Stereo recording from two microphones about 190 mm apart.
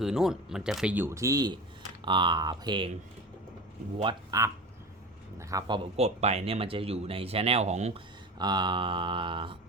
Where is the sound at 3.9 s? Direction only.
20° right (ahead or behind).